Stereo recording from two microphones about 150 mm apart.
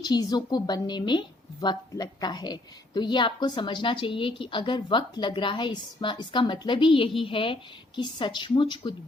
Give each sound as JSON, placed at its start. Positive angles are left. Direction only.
{"t": 0.0, "sound": "a woman's voice", "side_deg": 25}